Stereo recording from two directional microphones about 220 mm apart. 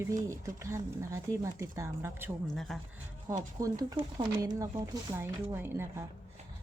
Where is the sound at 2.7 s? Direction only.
Centre (ahead or behind).